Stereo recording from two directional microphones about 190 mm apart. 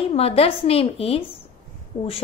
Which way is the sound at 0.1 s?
30° left (ahead or behind).